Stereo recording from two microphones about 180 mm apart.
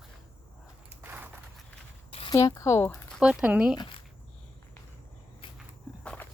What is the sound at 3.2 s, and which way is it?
Speech, 5° right (ahead or behind).